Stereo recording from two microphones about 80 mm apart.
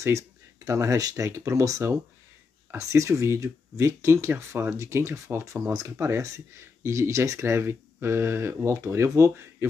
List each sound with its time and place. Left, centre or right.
0.7 s speech: right